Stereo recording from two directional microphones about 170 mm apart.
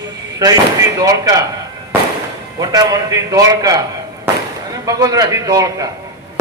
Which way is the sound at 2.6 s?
20° right (ahead or behind).